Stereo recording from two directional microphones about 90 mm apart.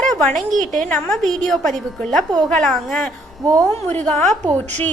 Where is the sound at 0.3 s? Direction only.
5° left (ahead or behind).